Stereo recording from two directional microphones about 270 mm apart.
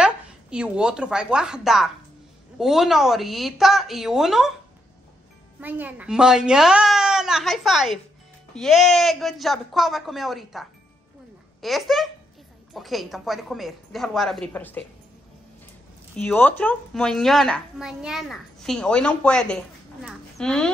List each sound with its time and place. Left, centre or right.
0.0 s a woman's voice: centre
5.6 s a woman's voice: centre
16.2 s a woman's voice: centre